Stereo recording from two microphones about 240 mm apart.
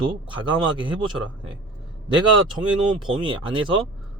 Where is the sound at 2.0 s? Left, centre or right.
Centre.